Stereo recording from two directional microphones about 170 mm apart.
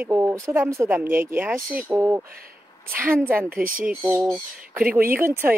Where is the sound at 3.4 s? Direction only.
55° right (ahead or behind).